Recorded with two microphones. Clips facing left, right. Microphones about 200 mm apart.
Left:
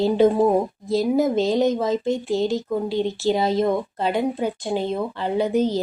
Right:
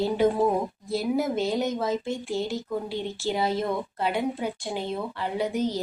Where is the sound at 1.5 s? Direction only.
20° left (ahead or behind).